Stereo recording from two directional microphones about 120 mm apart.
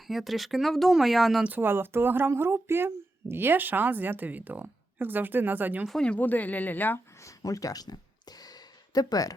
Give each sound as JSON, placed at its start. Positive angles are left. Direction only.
{"t": 0.1, "sound": "speech", "side_deg": 0}
{"t": 1.5, "sound": "speech", "side_deg": -15}
{"t": 5.8, "sound": "speech", "side_deg": 5}
{"t": 7.3, "sound": "speech", "side_deg": 30}
{"t": 8.4, "sound": "a sound", "side_deg": 30}